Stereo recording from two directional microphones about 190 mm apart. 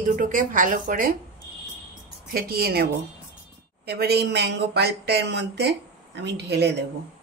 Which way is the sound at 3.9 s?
60° right (ahead or behind).